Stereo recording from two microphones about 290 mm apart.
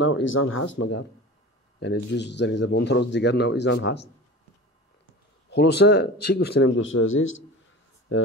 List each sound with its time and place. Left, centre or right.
0.0 s speech: left
5.5 s speech: left